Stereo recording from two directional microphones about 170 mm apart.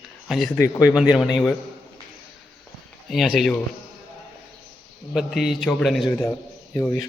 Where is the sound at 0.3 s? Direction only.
Centre (ahead or behind).